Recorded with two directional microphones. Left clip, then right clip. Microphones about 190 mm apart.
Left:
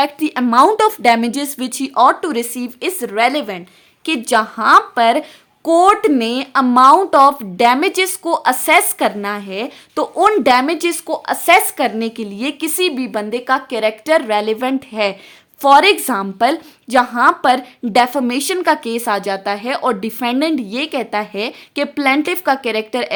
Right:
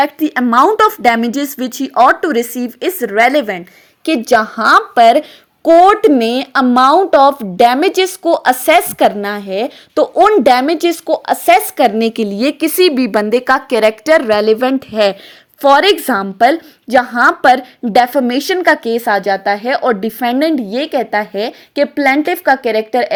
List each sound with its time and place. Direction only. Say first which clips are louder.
0.0 s a woman's voice: right 3 dB; 10° right (ahead or behind)